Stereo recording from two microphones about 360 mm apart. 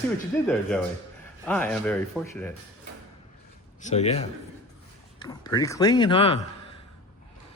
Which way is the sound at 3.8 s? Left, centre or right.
Centre.